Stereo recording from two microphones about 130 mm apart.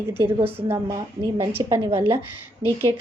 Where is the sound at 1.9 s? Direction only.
20° right (ahead or behind).